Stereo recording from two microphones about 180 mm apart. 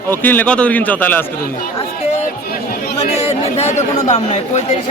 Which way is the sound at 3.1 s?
35° left (ahead or behind).